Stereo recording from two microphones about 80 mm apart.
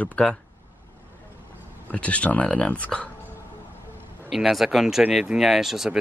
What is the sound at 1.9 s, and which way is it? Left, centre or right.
Speech, centre.